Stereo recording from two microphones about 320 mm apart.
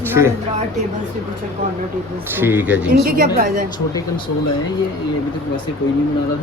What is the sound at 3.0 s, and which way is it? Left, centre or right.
Speech, right.